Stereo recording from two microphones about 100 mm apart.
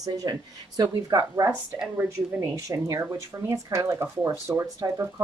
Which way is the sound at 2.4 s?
30° right (ahead or behind).